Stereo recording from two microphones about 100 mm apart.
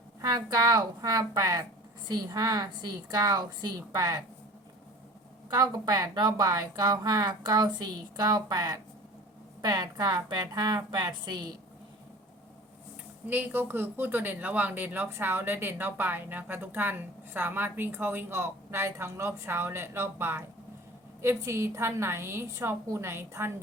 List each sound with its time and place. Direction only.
0.2 s a woman's voice: 40° right (ahead or behind)
5.5 s a woman's voice: 40° right (ahead or behind)
13.2 s speech: 20° right (ahead or behind)